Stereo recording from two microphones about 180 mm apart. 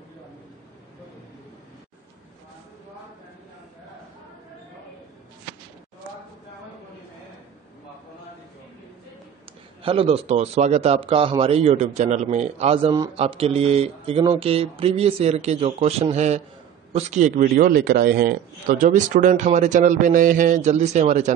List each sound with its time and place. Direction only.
9.8 s a man's voice: 30° right (ahead or behind)